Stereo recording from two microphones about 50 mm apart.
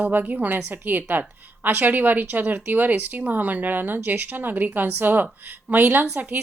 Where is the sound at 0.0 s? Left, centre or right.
Right.